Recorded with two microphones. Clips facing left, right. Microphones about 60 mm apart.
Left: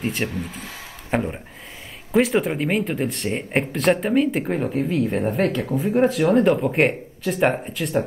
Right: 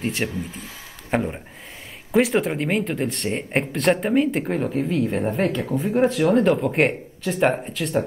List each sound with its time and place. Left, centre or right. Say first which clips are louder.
0.0 s speech: even; centre
0.3 s speech: left 1 dB; left
1.1 s speech: even; centre